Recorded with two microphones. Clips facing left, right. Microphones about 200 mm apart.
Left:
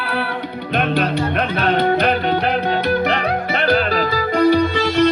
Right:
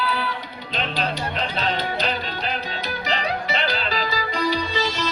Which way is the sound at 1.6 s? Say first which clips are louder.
Left 11 dB; 60° left (ahead or behind).